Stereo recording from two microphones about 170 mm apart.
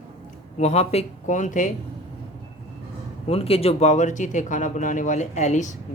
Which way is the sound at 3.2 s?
35° left (ahead or behind).